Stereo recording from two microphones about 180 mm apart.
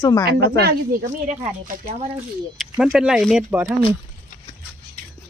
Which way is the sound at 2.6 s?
5° right (ahead or behind).